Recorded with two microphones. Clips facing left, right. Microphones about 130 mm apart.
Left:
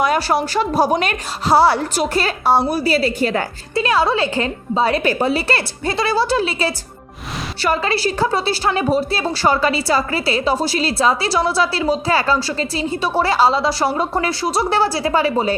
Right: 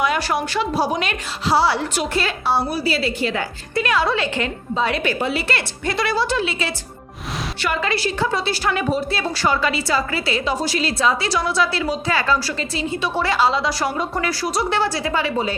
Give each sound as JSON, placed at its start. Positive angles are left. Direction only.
{"t": 0.0, "sound": "a woman's voice", "side_deg": 40}
{"t": 3.8, "sound": "a woman's voice", "side_deg": 30}